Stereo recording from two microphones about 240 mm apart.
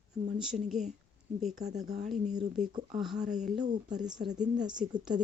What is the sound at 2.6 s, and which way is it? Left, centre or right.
Speech, right.